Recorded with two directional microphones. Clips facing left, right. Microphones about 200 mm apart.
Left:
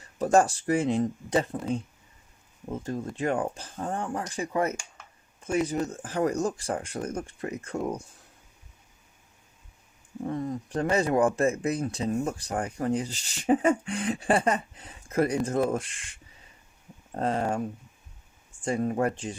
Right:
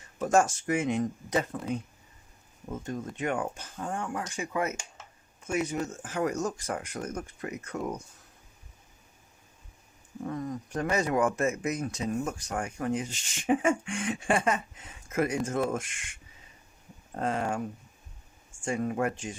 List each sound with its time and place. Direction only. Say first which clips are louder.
0.2 s speech: left 3 dB; 35° left (ahead or behind)
2.8 s speech: left 3 dB; 35° left (ahead or behind)
10.2 s speech: left 3 dB; 30° left (ahead or behind)
17.2 s speech: left 3 dB; 35° left (ahead or behind)
18.6 s speech: left 3 dB; 35° left (ahead or behind)